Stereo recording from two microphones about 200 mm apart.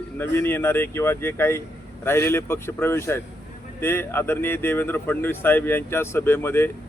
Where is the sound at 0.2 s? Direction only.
10° left (ahead or behind).